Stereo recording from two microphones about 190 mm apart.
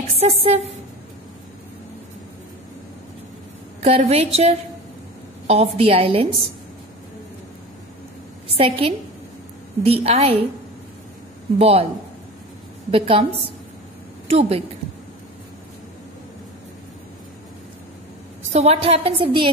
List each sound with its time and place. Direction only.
0.1 s speech: 30° right (ahead or behind)
3.8 s a woman's voice: 30° right (ahead or behind)
8.5 s a woman's voice: 30° right (ahead or behind)
11.5 s a woman's voice: 30° right (ahead or behind)
12.9 s a woman's voice: 30° right (ahead or behind)
14.3 s a woman's voice: 30° right (ahead or behind)
18.5 s a woman's voice: 35° right (ahead or behind)